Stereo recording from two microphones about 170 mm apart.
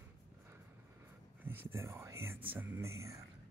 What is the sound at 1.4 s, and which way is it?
Whispering, 10° right (ahead or behind).